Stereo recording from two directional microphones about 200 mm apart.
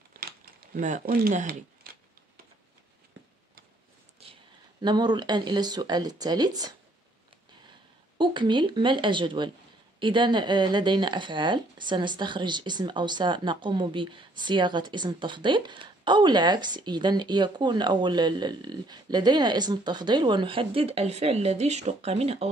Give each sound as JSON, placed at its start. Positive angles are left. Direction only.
{"t": 0.7, "sound": "speech", "side_deg": -40}
{"t": 4.8, "sound": "speech", "side_deg": -20}
{"t": 8.2, "sound": "speech", "side_deg": -25}